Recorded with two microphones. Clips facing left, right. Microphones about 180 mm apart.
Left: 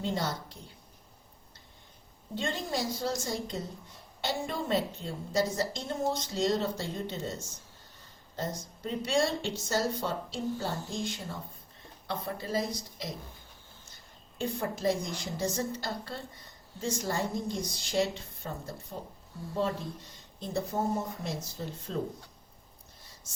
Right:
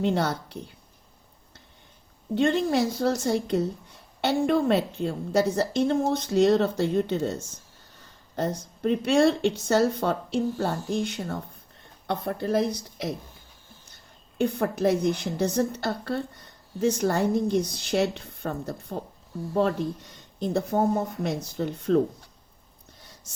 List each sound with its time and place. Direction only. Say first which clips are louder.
0.0 s a woman's voice: right 8 dB; 65° right (ahead or behind)
2.3 s a woman's voice: right 11 dB; 60° right (ahead or behind)
8.4 s a woman's voice: right 8 dB; 65° right (ahead or behind)
14.3 s a woman's voice: right 8 dB; 65° right (ahead or behind)
20.5 s speech: right 7 dB; 65° right (ahead or behind)